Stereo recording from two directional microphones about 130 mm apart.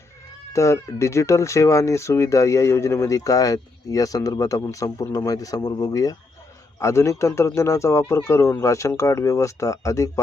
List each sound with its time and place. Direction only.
0.5 s speech: 20° left (ahead or behind)